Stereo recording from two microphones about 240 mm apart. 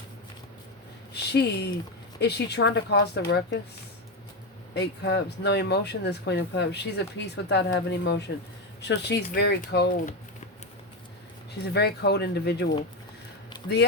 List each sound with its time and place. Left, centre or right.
1.1 s speech: left
4.7 s speech: left
11.6 s speech: left